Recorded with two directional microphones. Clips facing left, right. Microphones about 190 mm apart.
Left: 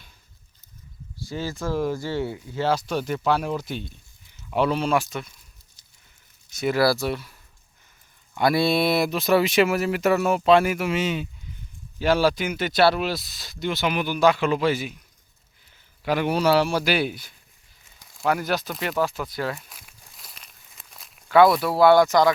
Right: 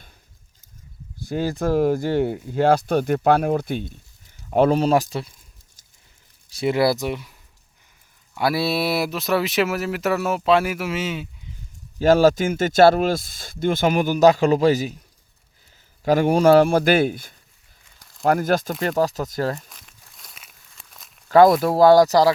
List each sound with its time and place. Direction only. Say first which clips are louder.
1.1 s speech: right 6 dB; 55° right (ahead or behind); by 5.3 s 30° right (ahead or behind)
6.5 s speech: right 2 dB; 30° right (ahead or behind)
8.4 s speech: left 1 dB; 5° right (ahead or behind)
11.9 s speech: right 6 dB; 45° right (ahead or behind)
16.0 s speech: right 6 dB; 45° right (ahead or behind)
19.7 s walk: even; 5° left (ahead or behind)
21.2 s speech: right 3 dB; 40° right (ahead or behind)